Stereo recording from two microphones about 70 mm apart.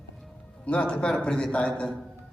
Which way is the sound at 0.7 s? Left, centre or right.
Centre.